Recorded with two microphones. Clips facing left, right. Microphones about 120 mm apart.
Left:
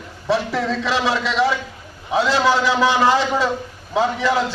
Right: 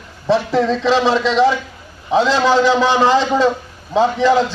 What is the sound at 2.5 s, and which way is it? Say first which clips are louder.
A man's voice: right 4 dB; 25° right (ahead or behind).